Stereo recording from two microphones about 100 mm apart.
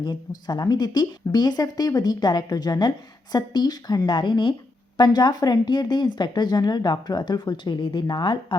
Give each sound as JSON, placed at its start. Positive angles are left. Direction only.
{"t": 0.0, "sound": "speech", "side_deg": 45}